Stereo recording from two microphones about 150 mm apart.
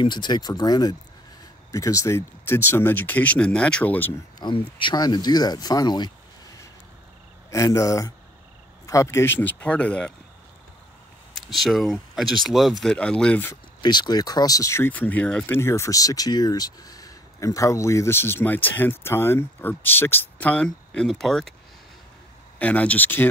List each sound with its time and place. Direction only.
0.0 s speech: 30° left (ahead or behind); by 4.1 s 10° left (ahead or behind)
4.4 s speech: 35° left (ahead or behind); by 10.1 s 5° left (ahead or behind)
11.5 s speech: centre (ahead or behind)
13.7 s speech: 30° left (ahead or behind); by 21.5 s centre (ahead or behind)
22.6 s speech: 10° left (ahead or behind)